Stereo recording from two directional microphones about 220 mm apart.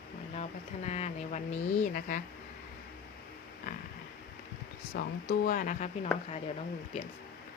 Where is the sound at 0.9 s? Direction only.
30° left (ahead or behind).